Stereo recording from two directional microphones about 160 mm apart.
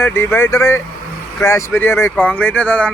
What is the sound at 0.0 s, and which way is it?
Speech, 15° left (ahead or behind).